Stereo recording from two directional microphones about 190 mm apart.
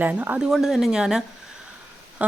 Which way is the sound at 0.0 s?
10° right (ahead or behind).